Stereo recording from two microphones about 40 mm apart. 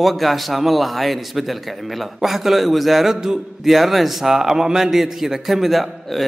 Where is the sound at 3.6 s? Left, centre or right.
Centre.